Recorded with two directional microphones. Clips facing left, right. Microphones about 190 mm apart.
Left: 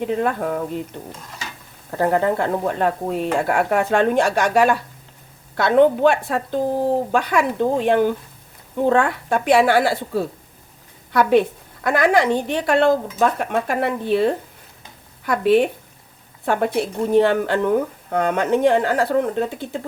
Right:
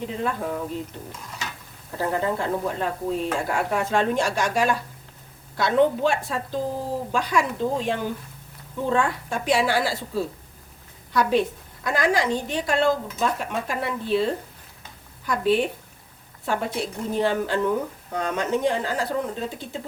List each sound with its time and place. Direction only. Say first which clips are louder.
0.2 s a woman's voice: left 5 dB; 60° left (ahead or behind)
2.0 s a woman's voice: left 6 dB; 65° left (ahead or behind)